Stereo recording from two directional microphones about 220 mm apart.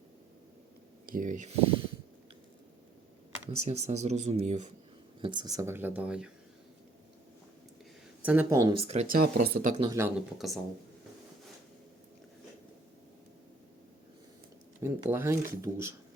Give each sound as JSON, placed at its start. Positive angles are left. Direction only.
{"t": 1.0, "sound": "speech", "side_deg": -40}
{"t": 3.7, "sound": "speech", "side_deg": -30}
{"t": 5.2, "sound": "speech", "side_deg": -20}
{"t": 8.2, "sound": "speech", "side_deg": -10}
{"t": 9.2, "sound": "speech", "side_deg": -40}
{"t": 9.8, "sound": "speech", "side_deg": -15}
{"t": 10.3, "sound": "speech", "side_deg": 0}
{"t": 14.8, "sound": "speech", "side_deg": -10}